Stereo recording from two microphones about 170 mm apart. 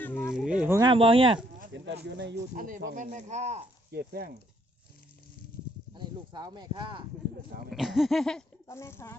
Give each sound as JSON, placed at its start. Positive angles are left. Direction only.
{"t": 0.0, "sound": "a sound", "side_deg": 10}
{"t": 0.3, "sound": "a sound", "side_deg": -5}
{"t": 0.8, "sound": "speech", "side_deg": -30}
{"t": 1.7, "sound": "speech", "side_deg": -90}
{"t": 2.6, "sound": "speech", "side_deg": -50}
{"t": 3.9, "sound": "speech", "side_deg": -65}
{"t": 5.9, "sound": "speech", "side_deg": -25}
{"t": 7.7, "sound": "a sound", "side_deg": 0}
{"t": 8.6, "sound": "speech", "side_deg": 15}